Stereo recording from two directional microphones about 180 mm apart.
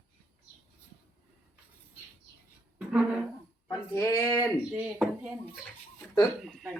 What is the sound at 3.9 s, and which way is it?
Speech, 20° left (ahead or behind).